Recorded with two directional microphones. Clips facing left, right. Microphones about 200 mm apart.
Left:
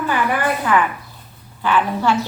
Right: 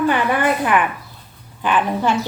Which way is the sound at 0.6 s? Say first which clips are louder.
Even; 20° right (ahead or behind).